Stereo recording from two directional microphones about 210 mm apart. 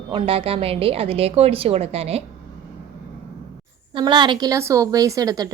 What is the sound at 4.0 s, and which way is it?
A woman's voice, 20° right (ahead or behind).